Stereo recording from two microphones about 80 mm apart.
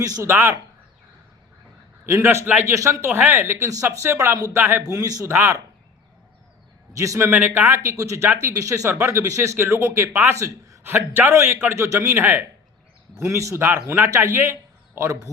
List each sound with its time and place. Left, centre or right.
0.2 s speech: right
2.0 s speech: right
2.7 s speech: right
3.1 s a man's voice: right
4.9 s a man's voice: right
5.3 s speech: right
6.9 s speech: right
7.9 s speech: right
10.8 s a man's voice: right
14.5 s a sound: right